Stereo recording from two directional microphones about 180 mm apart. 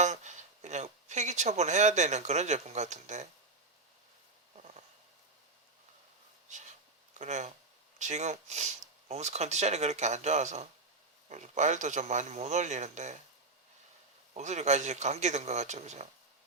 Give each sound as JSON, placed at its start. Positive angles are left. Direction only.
{"t": 0.0, "sound": "speech", "side_deg": -40}
{"t": 7.1, "sound": "speech", "side_deg": -40}
{"t": 14.3, "sound": "speech", "side_deg": -40}